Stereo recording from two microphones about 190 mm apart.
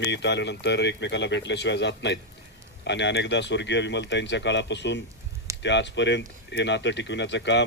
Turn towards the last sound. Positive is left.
turn(degrees=70)  # may be behind; listen again after turning